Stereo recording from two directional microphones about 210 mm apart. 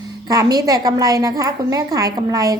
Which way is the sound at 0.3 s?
15° right (ahead or behind).